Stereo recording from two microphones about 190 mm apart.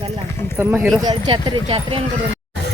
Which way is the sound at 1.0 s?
20° right (ahead or behind).